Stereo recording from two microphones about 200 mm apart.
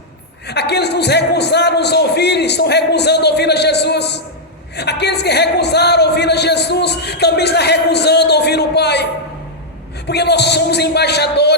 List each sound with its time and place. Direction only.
0.4 s a man's voice: 55° left (ahead or behind)
10.1 s a man's voice: 55° left (ahead or behind)